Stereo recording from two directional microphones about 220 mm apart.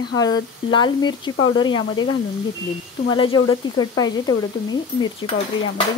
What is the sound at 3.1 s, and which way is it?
Speech, 20° left (ahead or behind).